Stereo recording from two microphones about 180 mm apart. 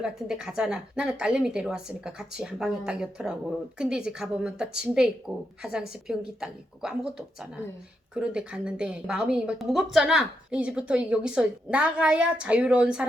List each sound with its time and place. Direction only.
0.0 s a woman's voice: 5° right (ahead or behind)